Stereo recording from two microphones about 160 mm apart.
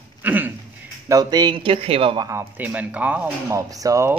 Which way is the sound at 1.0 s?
25° right (ahead or behind).